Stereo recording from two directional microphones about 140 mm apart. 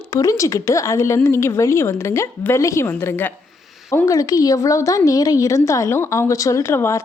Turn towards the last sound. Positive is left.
turn(degrees=20)  # may be behind; listen again after turning